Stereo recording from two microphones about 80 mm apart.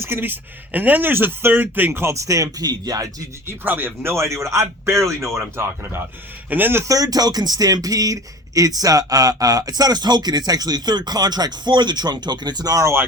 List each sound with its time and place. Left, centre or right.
0.0 s speech: right
3.4 s speech: right
6.8 s speech: right